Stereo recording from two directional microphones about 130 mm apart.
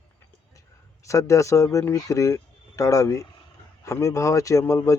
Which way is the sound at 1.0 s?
25° left (ahead or behind).